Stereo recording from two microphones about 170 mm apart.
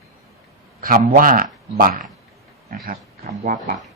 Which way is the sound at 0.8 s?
60° right (ahead or behind).